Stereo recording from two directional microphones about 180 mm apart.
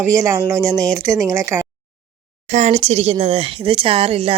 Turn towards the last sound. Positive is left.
turn(degrees=-30)  # may be behind; listen again after turning